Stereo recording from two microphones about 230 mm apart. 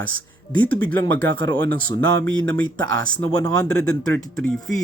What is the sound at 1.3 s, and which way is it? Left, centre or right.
Speech, centre.